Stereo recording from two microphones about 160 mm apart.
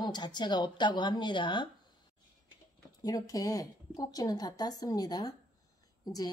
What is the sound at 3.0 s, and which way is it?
A woman's voice, 25° left (ahead or behind).